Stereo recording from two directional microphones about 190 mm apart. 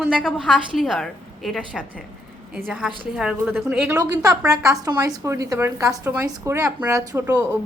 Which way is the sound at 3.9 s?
20° right (ahead or behind).